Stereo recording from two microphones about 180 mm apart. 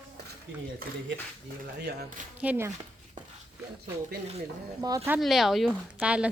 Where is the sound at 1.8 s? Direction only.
65° right (ahead or behind).